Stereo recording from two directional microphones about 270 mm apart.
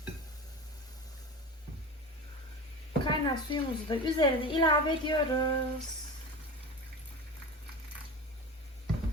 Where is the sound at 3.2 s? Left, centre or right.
Centre.